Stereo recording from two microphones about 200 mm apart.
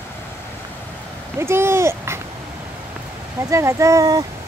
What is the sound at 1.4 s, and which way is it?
Speech, 10° right (ahead or behind).